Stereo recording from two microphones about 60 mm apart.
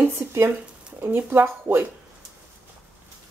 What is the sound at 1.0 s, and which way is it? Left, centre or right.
Speech, right.